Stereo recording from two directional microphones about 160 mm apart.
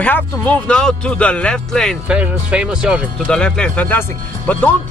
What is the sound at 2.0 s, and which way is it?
Speech, 5° right (ahead or behind).